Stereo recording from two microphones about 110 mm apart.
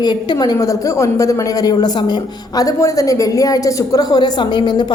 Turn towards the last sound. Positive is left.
turn(degrees=40)  # may be behind; listen again after turning